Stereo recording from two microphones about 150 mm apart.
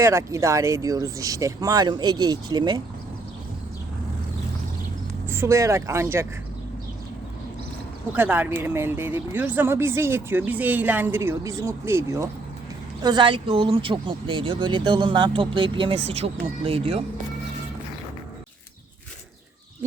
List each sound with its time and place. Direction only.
0.0 s speech: 20° right (ahead or behind)
5.3 s speech: 20° right (ahead or behind)
8.1 s speech: 10° right (ahead or behind)
13.0 s speech: 30° right (ahead or behind)